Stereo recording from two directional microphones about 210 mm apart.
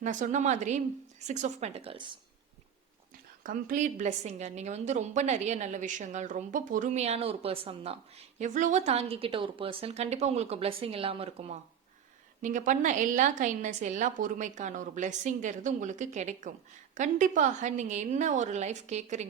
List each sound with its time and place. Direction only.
0.0 s a woman's voice: 35° right (ahead or behind)
3.4 s a woman's voice: 40° right (ahead or behind)
8.4 s a woman's voice: 35° right (ahead or behind)